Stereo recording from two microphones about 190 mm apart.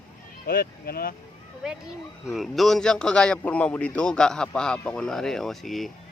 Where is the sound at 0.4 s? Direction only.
50° left (ahead or behind).